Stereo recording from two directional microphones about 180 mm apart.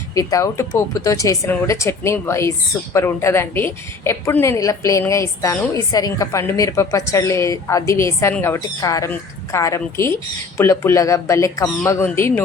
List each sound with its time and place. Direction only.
0.1 s a woman's voice: 20° left (ahead or behind)